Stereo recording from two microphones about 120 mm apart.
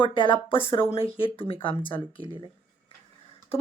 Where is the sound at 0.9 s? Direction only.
50° left (ahead or behind).